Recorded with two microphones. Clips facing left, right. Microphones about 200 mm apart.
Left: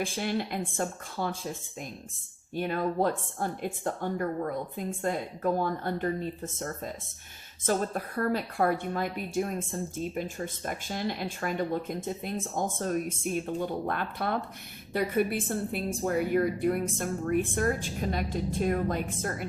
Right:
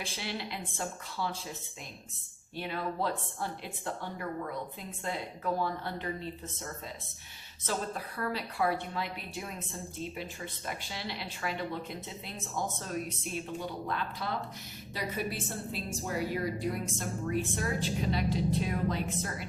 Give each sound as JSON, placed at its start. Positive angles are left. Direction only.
{"t": 0.0, "sound": "a woman's voice", "side_deg": 50}
{"t": 2.6, "sound": "a woman's voice", "side_deg": 50}